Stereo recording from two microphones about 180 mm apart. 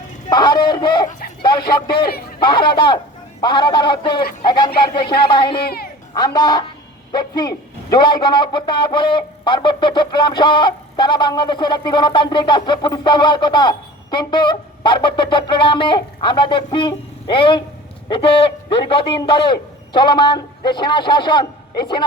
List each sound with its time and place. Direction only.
0.3 s chicken: 25° left (ahead or behind)
1.4 s speech: 25° left (ahead or behind)
2.0 s speech: 60° left (ahead or behind)
2.4 s a man's voice: 25° left (ahead or behind)
5.5 s speech: 60° left (ahead or behind)
6.1 s a man's voice: 25° left (ahead or behind)